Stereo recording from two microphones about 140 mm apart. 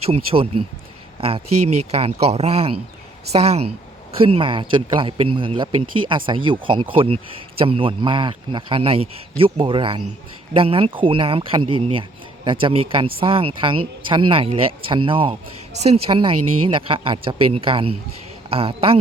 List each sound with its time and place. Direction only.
0.0 s speech: 45° right (ahead or behind)